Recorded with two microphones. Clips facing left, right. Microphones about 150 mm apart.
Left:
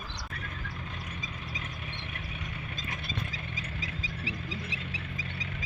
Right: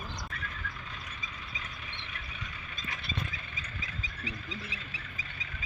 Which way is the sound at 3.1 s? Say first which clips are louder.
Left 1 dB; 90° left.